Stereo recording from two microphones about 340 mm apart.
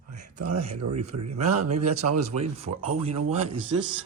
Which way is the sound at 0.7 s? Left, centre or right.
Right.